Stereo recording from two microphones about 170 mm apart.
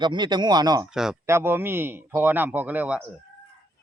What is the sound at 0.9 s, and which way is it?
A man's voice, 5° right (ahead or behind).